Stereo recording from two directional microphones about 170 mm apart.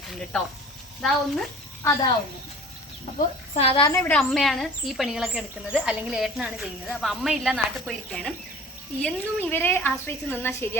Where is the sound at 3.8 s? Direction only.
20° left (ahead or behind).